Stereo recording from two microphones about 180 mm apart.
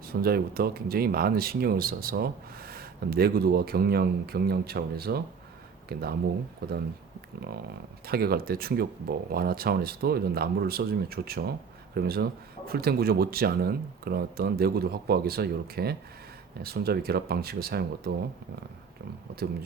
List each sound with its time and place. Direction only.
0.1 s speech: 55° right (ahead or behind)